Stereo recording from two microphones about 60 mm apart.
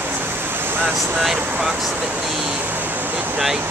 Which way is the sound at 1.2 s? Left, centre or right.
Centre.